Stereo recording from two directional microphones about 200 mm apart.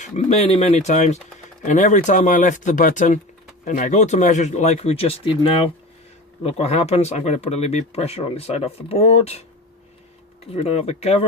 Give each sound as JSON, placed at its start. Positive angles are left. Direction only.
{"t": 0.0, "sound": "speech", "side_deg": 35}
{"t": 10.5, "sound": "speech", "side_deg": 30}